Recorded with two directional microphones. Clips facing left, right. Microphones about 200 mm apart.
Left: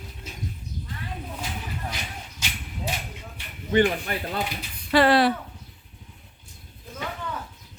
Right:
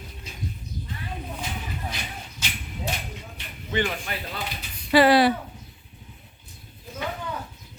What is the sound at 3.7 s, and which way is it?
Speech, 40° left (ahead or behind).